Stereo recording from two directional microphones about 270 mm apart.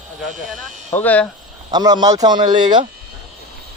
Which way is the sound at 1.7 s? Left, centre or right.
Centre.